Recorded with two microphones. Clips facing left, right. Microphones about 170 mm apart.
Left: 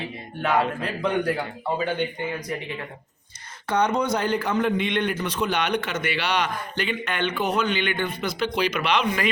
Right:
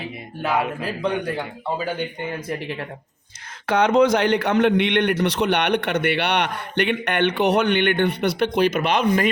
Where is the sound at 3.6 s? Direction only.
90° right.